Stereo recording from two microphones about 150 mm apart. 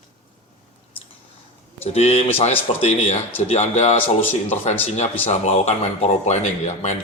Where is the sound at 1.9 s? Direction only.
45° left (ahead or behind).